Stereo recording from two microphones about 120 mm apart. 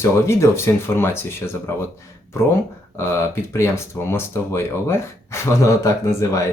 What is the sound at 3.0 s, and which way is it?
Speech, 20° left (ahead or behind).